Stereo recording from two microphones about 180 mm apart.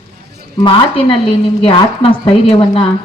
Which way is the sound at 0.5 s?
30° left (ahead or behind).